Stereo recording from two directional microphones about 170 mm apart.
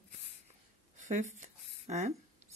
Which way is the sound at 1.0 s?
45° right (ahead or behind).